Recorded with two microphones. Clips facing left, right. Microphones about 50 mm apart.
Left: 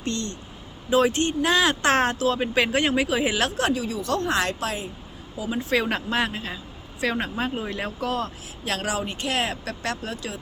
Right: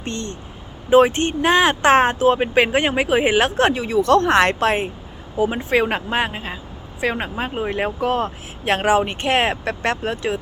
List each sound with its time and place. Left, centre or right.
0.0 s speech: right
3.7 s speech: right
5.6 s speech: right
7.6 s speech: right